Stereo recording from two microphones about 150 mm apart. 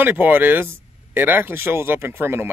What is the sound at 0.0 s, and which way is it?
Speech, 15° right (ahead or behind).